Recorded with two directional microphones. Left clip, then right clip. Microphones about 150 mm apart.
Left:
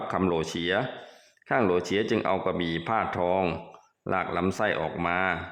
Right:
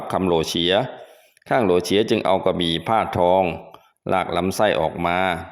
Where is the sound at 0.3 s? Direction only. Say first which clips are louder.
Right 8 dB; 25° right (ahead or behind).